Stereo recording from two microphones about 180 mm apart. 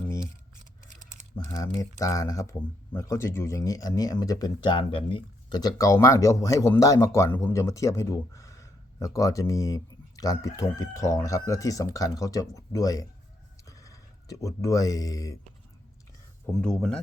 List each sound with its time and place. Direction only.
0.9 s typing: 45° right (ahead or behind)
1.4 s speech: 15° left (ahead or behind)
16.6 s speech: centre (ahead or behind)